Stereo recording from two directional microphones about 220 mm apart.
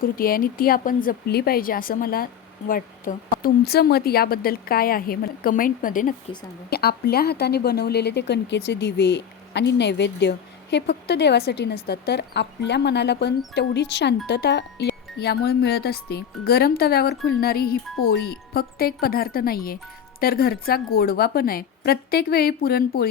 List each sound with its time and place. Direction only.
0.0 s speech: 40° left (ahead or behind)